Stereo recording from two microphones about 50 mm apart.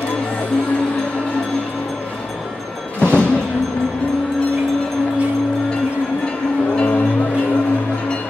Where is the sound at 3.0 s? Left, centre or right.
Left.